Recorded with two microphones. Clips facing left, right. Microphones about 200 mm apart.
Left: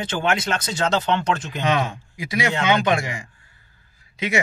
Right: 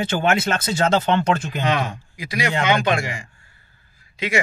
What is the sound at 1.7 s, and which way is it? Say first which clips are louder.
Speech: left 1 dB; 20° left (ahead or behind).